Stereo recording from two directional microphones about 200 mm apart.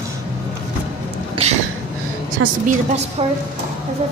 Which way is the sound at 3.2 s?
30° right (ahead or behind).